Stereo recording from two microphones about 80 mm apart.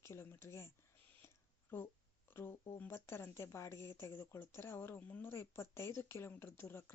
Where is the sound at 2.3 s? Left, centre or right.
Left.